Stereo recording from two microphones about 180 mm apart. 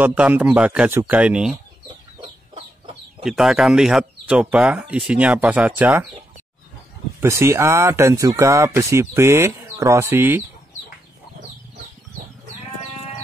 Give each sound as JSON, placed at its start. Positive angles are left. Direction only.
{"t": 0.0, "sound": "speech", "side_deg": -10}
{"t": 2.5, "sound": "chicken", "side_deg": -30}
{"t": 3.3, "sound": "speech", "side_deg": -5}
{"t": 7.2, "sound": "speech", "side_deg": -15}